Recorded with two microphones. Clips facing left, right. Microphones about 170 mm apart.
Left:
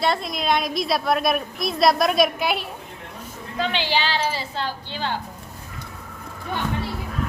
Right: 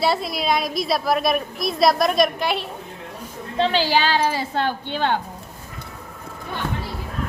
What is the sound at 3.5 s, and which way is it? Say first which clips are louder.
A woman's voice: right 5 dB; 35° right (ahead or behind).